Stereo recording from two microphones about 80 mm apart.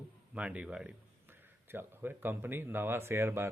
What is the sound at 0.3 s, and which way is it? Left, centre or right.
Speech, centre.